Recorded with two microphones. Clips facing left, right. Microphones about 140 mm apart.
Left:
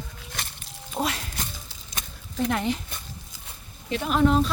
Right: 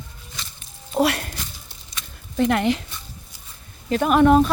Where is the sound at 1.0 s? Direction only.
65° right (ahead or behind).